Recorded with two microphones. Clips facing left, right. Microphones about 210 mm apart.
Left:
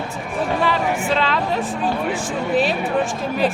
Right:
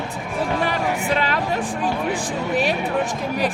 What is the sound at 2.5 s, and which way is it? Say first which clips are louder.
Speech: left 3 dB; 10° right (ahead or behind).